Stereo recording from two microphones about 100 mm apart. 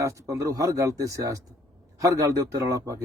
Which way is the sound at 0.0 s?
35° right (ahead or behind).